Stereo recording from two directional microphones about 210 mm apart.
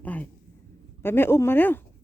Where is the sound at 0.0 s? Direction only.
10° left (ahead or behind).